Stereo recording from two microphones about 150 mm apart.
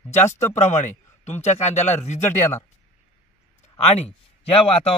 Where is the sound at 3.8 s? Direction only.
45° left (ahead or behind).